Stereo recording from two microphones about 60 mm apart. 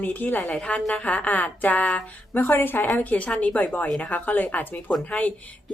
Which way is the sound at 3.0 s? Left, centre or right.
Left.